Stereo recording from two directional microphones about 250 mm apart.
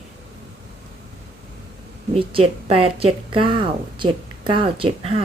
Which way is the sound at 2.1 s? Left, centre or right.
Right.